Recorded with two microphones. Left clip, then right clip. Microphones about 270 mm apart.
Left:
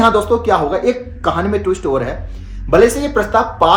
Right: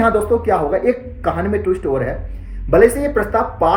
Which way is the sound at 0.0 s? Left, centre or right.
Centre.